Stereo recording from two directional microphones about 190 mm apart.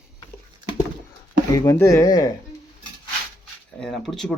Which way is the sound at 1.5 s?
15° left (ahead or behind).